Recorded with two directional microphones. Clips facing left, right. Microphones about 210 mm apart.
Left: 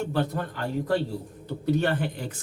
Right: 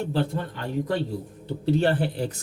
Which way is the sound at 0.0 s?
30° right (ahead or behind).